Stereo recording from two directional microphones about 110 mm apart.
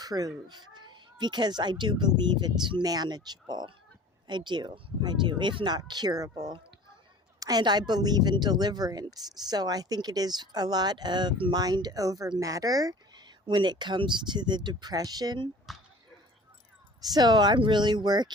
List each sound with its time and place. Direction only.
0.0 s a woman's voice: 35° right (ahead or behind)
15.7 s dog: centre (ahead or behind)
17.0 s a woman's voice: 35° right (ahead or behind)